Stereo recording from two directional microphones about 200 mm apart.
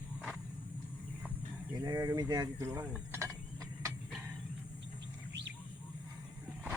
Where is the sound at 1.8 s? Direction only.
15° right (ahead or behind).